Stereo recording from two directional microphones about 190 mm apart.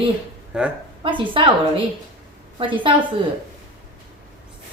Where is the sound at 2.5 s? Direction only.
25° right (ahead or behind).